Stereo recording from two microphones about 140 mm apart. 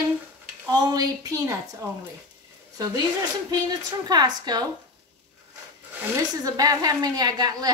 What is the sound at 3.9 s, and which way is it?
Speech, 30° right (ahead or behind).